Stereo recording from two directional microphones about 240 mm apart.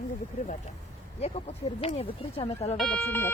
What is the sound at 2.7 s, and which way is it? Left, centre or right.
Speech, centre.